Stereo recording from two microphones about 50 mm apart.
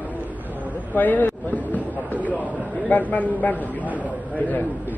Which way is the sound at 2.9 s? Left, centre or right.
Left.